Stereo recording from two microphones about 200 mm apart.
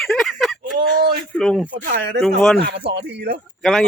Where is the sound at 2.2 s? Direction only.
5° left (ahead or behind).